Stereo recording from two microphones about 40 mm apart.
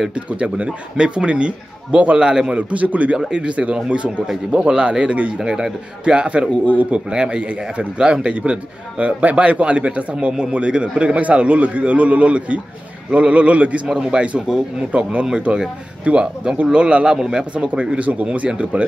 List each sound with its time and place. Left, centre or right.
0.1 s a man's voice: right
2.2 s a man's voice: centre
2.5 s a man's voice: right
3.3 s a man's voice: right
5.4 s a man's voice: centre
6.0 s a man's voice: right
7.1 s a man's voice: right
13.8 s a man's voice: centre
14.9 s a man's voice: right; by 17.8 s centre
17.9 s a man's voice: right